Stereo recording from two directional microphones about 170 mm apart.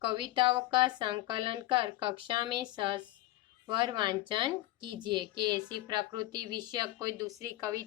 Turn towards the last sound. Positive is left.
turn(degrees=-20)  # may be behind; listen again after turning